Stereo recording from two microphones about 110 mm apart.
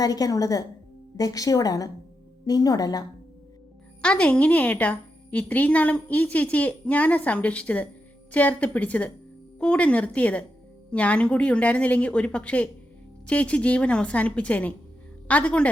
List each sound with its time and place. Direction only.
0.0 s a woman's voice: 35° left (ahead or behind)
4.0 s a woman's voice: 10° left (ahead or behind)